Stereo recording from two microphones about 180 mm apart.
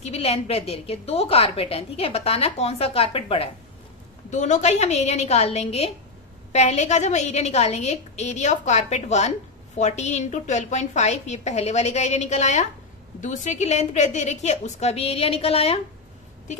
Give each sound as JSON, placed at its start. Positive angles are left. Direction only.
{"t": 0.0, "sound": "a woman's voice", "side_deg": 35}